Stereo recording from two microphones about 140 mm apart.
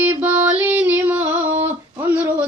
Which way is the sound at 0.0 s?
15° right (ahead or behind).